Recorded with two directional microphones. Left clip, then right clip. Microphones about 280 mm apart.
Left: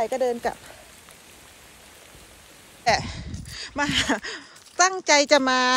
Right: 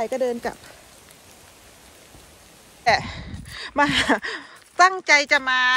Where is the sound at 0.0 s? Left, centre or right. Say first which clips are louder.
Even; centre.